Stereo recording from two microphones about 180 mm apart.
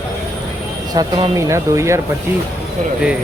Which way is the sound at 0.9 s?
20° right (ahead or behind).